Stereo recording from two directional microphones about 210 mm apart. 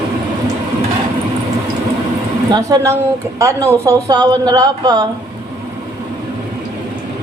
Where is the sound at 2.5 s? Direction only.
20° right (ahead or behind).